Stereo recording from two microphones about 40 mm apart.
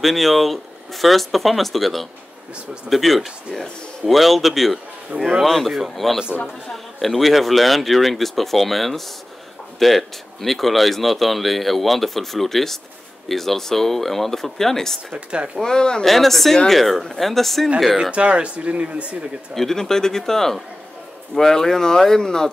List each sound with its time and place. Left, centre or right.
0.0 s speech: centre
15.1 s speech: right
15.6 s speech: centre
16.0 s speech: centre
18.1 s speech: right
19.5 s speech: centre